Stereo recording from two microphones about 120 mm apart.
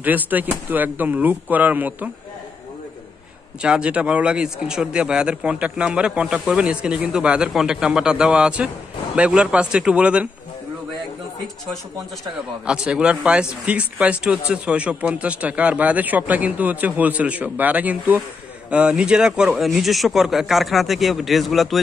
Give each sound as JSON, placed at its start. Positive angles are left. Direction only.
{"t": 0.0, "sound": "speech", "side_deg": -15}
{"t": 3.6, "sound": "speech", "side_deg": -10}
{"t": 12.6, "sound": "speech", "side_deg": -10}